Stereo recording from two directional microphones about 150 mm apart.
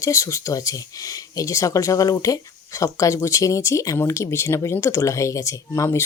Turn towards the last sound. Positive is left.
turn(degrees=20)  # may be behind; listen again after turning